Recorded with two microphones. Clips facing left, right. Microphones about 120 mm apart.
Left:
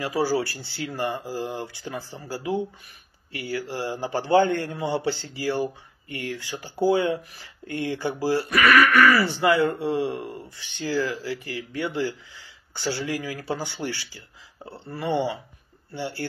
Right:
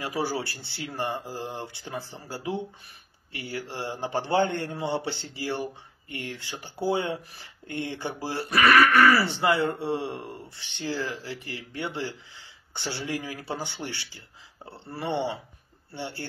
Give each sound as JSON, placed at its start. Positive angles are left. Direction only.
{"t": 0.2, "sound": "speech", "side_deg": -20}
{"t": 13.8, "sound": "a sound", "side_deg": -20}
{"t": 14.9, "sound": "speech", "side_deg": -25}